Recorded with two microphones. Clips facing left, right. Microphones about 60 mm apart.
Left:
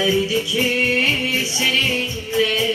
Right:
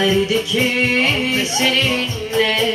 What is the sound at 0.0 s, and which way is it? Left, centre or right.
Music, right.